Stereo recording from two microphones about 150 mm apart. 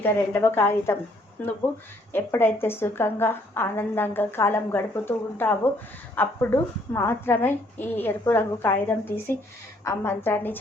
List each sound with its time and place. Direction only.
0.0 s a woman's voice: 15° left (ahead or behind)
2.1 s a woman's voice: 15° left (ahead or behind)